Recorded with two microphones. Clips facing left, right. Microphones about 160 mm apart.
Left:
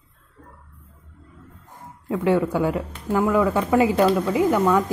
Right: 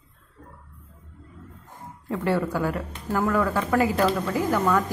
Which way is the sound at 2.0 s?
15° left (ahead or behind).